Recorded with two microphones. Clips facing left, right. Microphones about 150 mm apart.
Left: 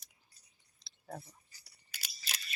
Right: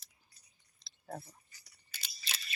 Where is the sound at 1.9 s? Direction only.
10° left (ahead or behind).